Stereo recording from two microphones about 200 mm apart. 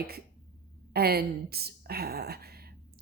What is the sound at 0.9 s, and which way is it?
A woman's voice, 50° right (ahead or behind).